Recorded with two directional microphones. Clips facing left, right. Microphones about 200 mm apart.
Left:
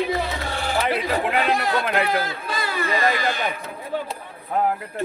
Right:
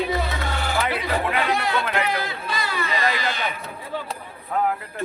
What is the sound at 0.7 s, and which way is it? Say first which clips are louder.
Speech: left 3 dB; 40° left (ahead or behind).